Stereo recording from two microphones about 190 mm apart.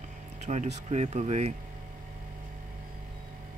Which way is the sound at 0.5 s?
35° right (ahead or behind).